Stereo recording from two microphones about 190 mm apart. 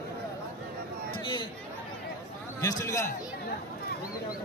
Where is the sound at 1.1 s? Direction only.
25° left (ahead or behind).